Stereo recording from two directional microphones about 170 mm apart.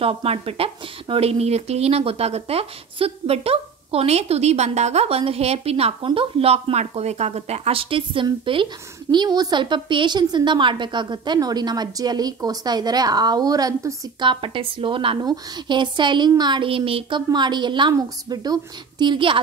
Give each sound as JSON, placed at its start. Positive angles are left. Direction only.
{"t": 0.0, "sound": "a woman's voice", "side_deg": -35}